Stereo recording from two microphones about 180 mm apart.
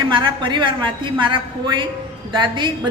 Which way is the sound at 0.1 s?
25° right (ahead or behind).